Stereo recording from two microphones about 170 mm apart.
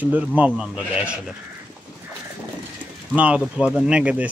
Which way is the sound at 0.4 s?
5° right (ahead or behind).